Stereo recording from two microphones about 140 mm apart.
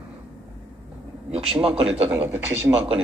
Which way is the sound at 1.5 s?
45° right (ahead or behind).